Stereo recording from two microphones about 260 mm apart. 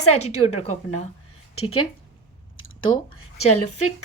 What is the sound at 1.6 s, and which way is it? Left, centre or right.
Speech, left.